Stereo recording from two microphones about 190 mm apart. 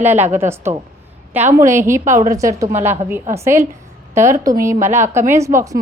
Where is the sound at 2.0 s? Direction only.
40° right (ahead or behind).